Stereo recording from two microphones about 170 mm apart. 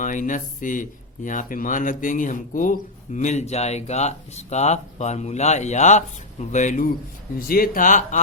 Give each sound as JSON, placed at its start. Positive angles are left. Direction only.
{"t": 0.0, "sound": "speech", "side_deg": 50}
{"t": 7.3, "sound": "speech", "side_deg": 60}